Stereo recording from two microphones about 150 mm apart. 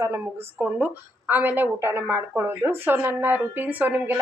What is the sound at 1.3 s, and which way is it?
Speech, 10° right (ahead or behind).